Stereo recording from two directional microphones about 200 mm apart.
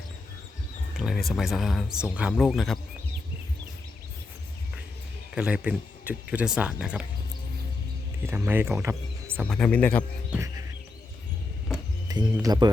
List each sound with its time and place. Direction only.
0.9 s speech: centre (ahead or behind)
5.3 s speech: 5° right (ahead or behind)
8.3 s speech: 10° right (ahead or behind)
9.5 s speech: 5° left (ahead or behind)
12.0 s speech: 20° right (ahead or behind)